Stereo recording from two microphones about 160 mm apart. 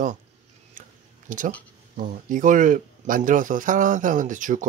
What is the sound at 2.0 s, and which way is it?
Speech, 55° right (ahead or behind).